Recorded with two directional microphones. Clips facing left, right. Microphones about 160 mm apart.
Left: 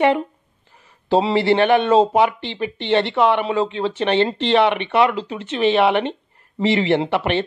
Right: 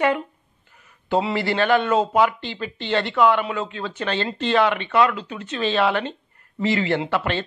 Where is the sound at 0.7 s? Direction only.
30° left (ahead or behind).